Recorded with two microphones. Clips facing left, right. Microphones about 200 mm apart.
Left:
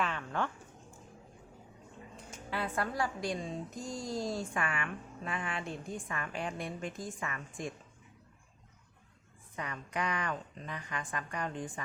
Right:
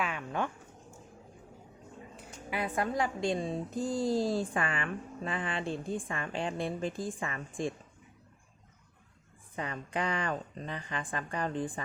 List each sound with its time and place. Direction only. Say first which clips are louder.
0.0 s a sound: right 1 dB; 10° right (ahead or behind)
2.1 s a woman's voice: right 2 dB; 15° right (ahead or behind); by 7.7 s 30° right (ahead or behind)
9.6 s a woman's voice: right 3 dB; 30° right (ahead or behind)